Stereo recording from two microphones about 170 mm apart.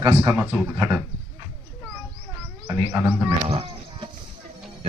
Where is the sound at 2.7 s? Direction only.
15° right (ahead or behind).